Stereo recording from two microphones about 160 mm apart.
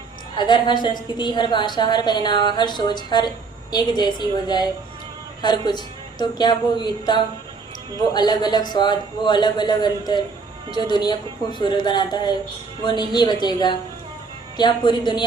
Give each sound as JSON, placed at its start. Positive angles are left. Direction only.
{"t": 0.3, "sound": "a woman's voice", "side_deg": 25}